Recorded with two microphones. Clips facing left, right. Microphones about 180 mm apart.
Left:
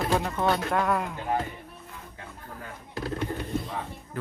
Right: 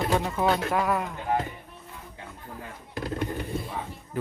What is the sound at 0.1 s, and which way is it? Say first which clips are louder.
Speech: right 1 dB; 5° right (ahead or behind).